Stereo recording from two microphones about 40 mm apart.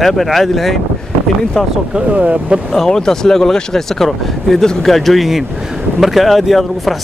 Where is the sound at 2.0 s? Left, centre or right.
Right.